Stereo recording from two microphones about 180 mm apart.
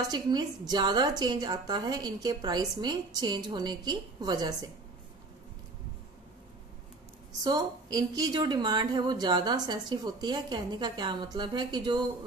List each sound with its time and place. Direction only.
0.1 s speech: 25° right (ahead or behind)
7.4 s speech: 20° right (ahead or behind)